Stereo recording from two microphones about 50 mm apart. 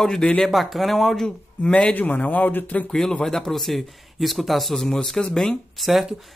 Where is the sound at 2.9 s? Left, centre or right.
Centre.